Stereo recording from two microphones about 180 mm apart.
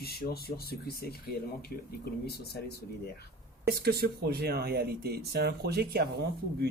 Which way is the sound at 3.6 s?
60° right (ahead or behind).